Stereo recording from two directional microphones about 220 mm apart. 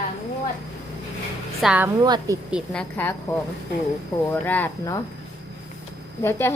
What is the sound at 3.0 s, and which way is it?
A woman's voice, 10° left (ahead or behind).